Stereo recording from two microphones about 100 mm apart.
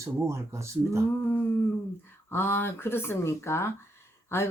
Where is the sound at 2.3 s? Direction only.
25° left (ahead or behind).